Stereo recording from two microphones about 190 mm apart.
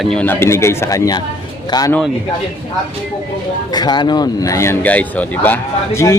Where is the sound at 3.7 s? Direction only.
20° left (ahead or behind).